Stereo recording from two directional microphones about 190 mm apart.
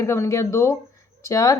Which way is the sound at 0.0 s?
15° left (ahead or behind).